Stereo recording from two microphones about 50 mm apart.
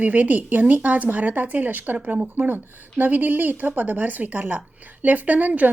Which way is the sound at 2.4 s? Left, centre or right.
Right.